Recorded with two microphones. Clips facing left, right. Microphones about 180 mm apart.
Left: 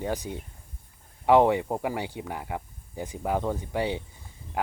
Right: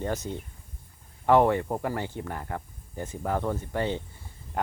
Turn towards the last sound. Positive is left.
turn(degrees=15)  # may be behind; listen again after turning